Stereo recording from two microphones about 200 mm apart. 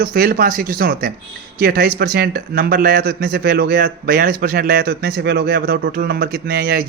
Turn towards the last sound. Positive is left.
turn(degrees=-50)  # may be behind; listen again after turning